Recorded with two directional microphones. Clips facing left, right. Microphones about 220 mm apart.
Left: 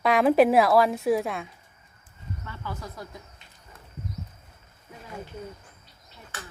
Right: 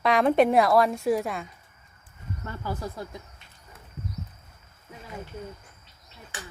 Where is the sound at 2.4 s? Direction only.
40° right (ahead or behind).